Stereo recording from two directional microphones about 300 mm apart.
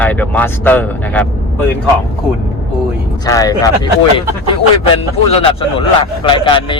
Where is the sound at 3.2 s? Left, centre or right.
Centre.